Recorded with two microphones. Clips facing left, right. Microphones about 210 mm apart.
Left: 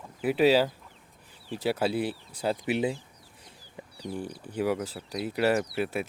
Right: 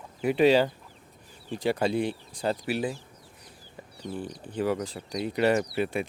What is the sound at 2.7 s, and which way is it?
Speech, 20° left (ahead or behind).